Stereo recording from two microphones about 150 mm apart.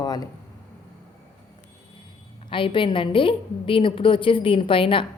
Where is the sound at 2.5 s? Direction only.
35° left (ahead or behind).